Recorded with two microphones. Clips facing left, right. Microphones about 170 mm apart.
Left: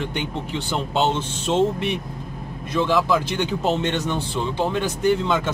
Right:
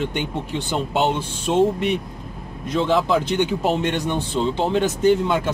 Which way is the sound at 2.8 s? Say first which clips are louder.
Right 1 dB; 20° right (ahead or behind).